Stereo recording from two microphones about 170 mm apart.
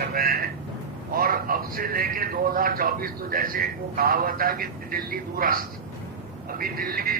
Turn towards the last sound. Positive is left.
turn(degrees=-55)  # may be behind; listen again after turning